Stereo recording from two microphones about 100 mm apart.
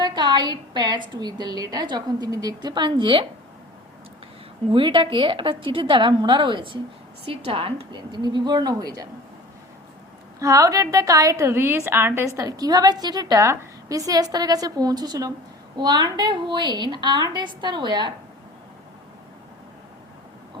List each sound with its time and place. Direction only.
0.0 s a woman's voice: 50° right (ahead or behind)
4.7 s a woman's voice: 55° right (ahead or behind)
7.3 s a woman's voice: 70° right (ahead or behind)
7.9 s a woman's voice: 50° right (ahead or behind)
10.4 s a woman's voice: 35° right (ahead or behind)
12.4 s a woman's voice: 40° right (ahead or behind)